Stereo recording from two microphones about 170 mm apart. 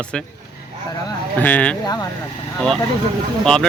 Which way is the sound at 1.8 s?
20° left (ahead or behind).